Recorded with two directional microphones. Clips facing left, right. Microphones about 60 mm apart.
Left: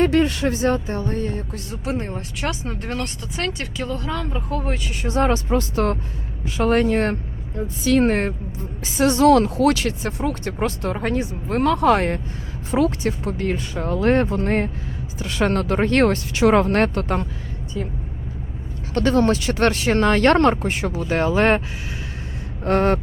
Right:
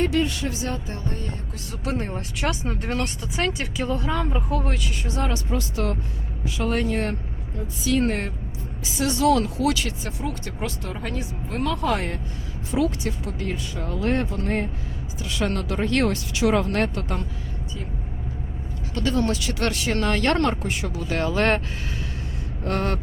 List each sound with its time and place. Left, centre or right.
0.0 s speech: left
1.7 s speech: left
2.0 s speech: centre
5.0 s speech: left
18.9 s speech: left; by 21.6 s centre
22.6 s speech: left